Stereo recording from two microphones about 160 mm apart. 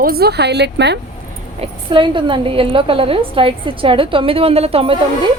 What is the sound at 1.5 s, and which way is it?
A woman's voice, 30° right (ahead or behind).